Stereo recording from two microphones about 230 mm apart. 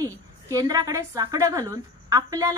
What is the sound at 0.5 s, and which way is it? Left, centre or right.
A woman's voice, centre.